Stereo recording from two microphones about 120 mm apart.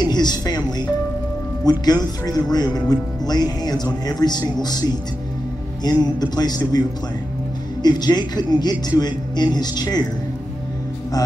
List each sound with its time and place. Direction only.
0.0 s a woman's voice: 35° left (ahead or behind)
7.8 s speech: 35° left (ahead or behind)